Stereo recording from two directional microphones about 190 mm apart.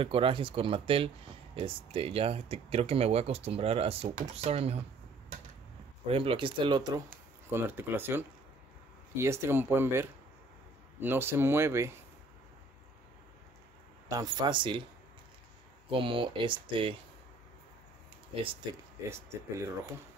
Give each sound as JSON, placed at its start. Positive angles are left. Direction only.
{"t": 0.0, "sound": "speech", "side_deg": -30}
{"t": 6.0, "sound": "speech", "side_deg": -30}
{"t": 7.5, "sound": "speech", "side_deg": -10}
{"t": 14.0, "sound": "speech", "side_deg": -20}
{"t": 15.9, "sound": "speech", "side_deg": -25}
{"t": 18.3, "sound": "speech", "side_deg": -30}